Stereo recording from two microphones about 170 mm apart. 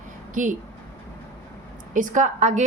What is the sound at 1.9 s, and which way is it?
Speech, 50° right (ahead or behind).